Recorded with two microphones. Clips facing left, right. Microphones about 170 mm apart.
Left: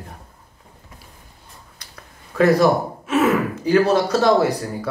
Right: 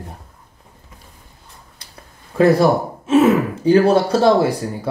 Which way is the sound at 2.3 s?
30° right (ahead or behind).